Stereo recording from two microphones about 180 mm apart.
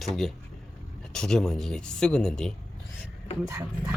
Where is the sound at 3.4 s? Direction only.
15° right (ahead or behind).